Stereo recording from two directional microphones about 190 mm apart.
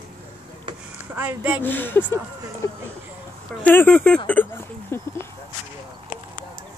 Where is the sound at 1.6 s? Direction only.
10° left (ahead or behind).